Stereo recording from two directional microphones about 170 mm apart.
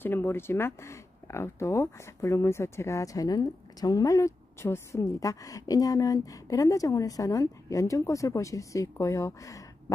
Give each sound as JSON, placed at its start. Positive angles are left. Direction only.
{"t": 0.0, "sound": "speech", "side_deg": 15}